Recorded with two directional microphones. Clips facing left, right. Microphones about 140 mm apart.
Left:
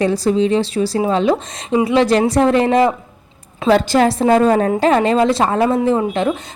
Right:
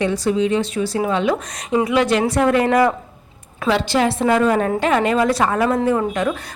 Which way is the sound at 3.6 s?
45° left (ahead or behind).